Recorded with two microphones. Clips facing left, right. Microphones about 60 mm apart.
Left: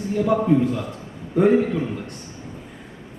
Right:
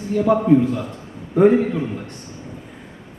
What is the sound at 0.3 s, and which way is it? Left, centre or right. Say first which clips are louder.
Speech: right 4 dB; centre.